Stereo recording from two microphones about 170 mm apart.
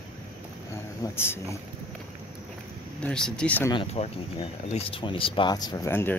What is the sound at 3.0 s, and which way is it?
Speech, 5° left (ahead or behind).